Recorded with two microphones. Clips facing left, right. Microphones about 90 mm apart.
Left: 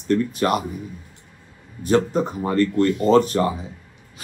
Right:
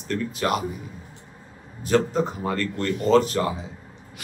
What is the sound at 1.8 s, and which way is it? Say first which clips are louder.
Speech: left 2 dB; 35° left (ahead or behind).